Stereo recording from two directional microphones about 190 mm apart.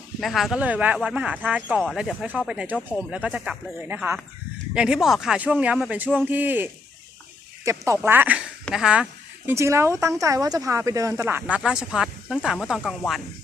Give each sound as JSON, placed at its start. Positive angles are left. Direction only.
{"t": 0.2, "sound": "speech", "side_deg": 0}
{"t": 9.5, "sound": "speech", "side_deg": -15}